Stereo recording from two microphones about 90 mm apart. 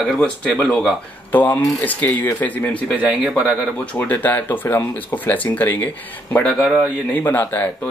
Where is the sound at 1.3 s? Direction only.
20° left (ahead or behind).